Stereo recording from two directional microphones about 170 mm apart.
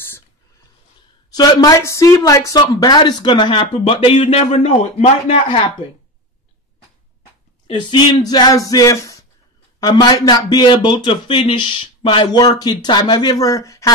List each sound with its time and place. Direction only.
1.3 s speech: 25° left (ahead or behind)
7.6 s speech: 25° left (ahead or behind)